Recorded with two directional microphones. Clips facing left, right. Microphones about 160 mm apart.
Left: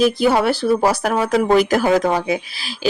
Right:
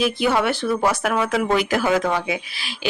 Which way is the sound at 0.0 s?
35° left (ahead or behind).